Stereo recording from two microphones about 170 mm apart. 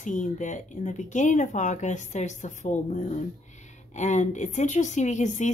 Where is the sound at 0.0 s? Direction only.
45° left (ahead or behind).